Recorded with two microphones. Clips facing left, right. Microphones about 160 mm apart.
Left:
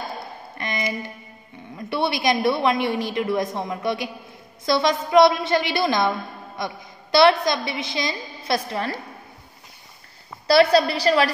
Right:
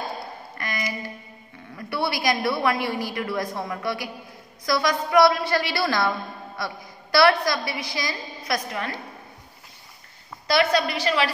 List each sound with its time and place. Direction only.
0.6 s a sound: 25° left (ahead or behind)
1.8 s a woman's voice: 20° left (ahead or behind)
10.4 s a woman's voice: 35° left (ahead or behind)